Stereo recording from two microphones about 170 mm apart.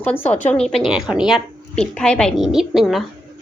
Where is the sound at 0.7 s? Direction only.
Centre (ahead or behind).